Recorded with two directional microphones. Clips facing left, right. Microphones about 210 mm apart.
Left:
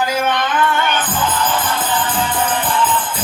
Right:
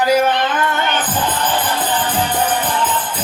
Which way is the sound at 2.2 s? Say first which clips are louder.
Right 1 dB; 40° right (ahead or behind).